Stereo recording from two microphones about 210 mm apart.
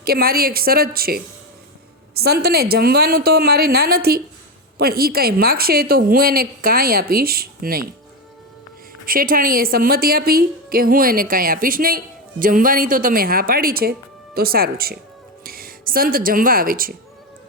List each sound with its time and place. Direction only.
0.0 s a woman's voice: 45° right (ahead or behind)
9.0 s a woman's voice: 40° right (ahead or behind)